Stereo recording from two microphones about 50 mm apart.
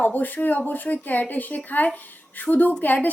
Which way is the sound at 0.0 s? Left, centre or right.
Left.